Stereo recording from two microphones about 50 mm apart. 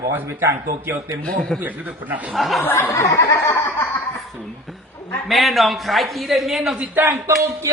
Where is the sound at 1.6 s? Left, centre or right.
Right.